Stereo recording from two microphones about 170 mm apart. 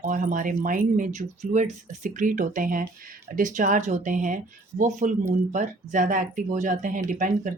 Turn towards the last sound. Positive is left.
turn(degrees=-50)  # may be behind; listen again after turning